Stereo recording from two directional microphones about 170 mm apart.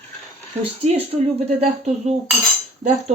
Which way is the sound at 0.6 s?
35° right (ahead or behind).